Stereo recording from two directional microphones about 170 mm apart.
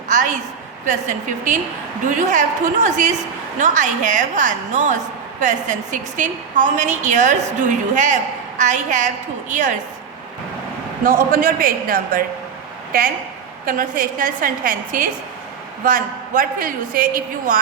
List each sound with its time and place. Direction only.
0.1 s a sound: 50° right (ahead or behind)
0.9 s a woman's voice: 45° right (ahead or behind)
11.0 s a man's voice: 55° right (ahead or behind)
13.7 s a woman's voice: 50° right (ahead or behind)